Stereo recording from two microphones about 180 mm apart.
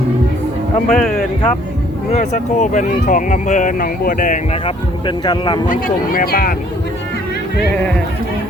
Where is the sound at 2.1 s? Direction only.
40° left (ahead or behind).